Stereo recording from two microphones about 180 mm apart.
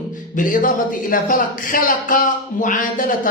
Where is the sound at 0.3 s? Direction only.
50° left (ahead or behind).